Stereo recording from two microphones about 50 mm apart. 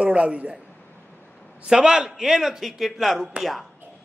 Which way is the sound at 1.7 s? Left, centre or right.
Centre.